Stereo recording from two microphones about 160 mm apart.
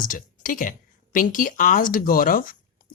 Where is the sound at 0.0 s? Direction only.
55° left (ahead or behind).